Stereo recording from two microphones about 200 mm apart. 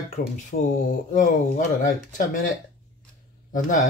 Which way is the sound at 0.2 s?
50° left (ahead or behind).